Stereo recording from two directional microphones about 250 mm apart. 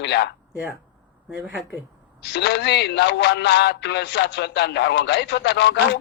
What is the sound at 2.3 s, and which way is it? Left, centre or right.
Speech, left.